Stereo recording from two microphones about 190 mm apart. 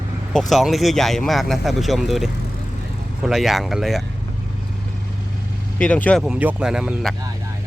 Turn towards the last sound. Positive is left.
turn(degrees=0)  # may be behind; listen again after turning